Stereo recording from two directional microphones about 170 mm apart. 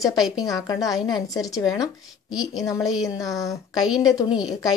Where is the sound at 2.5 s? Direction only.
20° left (ahead or behind).